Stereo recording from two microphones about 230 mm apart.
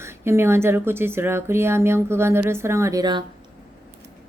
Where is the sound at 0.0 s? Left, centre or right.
Centre.